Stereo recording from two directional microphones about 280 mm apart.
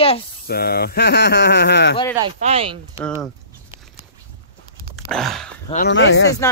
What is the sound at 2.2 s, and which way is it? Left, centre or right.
Speech, right.